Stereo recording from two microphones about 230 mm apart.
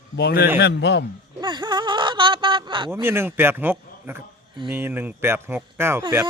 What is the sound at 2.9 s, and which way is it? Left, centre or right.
Speech, centre.